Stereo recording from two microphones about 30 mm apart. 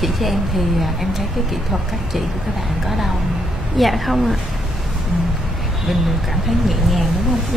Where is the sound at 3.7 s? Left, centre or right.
Centre.